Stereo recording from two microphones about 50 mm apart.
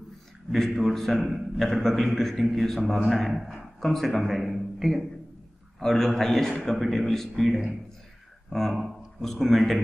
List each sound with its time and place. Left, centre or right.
0.5 s a man's voice: centre